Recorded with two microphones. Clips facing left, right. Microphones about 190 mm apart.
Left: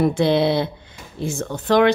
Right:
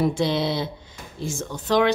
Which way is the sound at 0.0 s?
60° left (ahead or behind).